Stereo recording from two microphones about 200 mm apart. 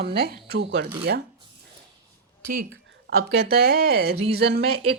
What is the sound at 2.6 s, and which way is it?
Speech, 50° right (ahead or behind).